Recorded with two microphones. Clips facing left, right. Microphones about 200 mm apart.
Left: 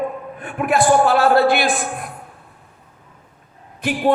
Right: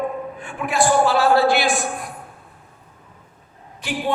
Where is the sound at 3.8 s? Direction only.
55° left (ahead or behind).